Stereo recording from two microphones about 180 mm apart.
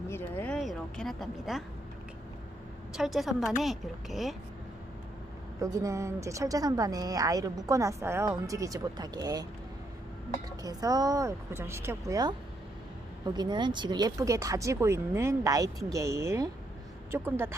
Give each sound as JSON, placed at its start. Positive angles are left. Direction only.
{"t": 0.1, "sound": "a sound", "side_deg": 10}
{"t": 2.9, "sound": "speech", "side_deg": 0}
{"t": 5.5, "sound": "a woman's voice", "side_deg": -20}
{"t": 10.6, "sound": "a woman's voice", "side_deg": -20}